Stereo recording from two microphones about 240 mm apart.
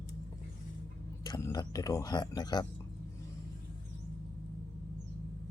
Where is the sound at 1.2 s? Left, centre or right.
Centre.